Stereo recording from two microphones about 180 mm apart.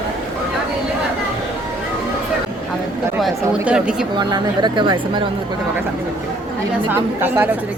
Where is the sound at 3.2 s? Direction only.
5° right (ahead or behind).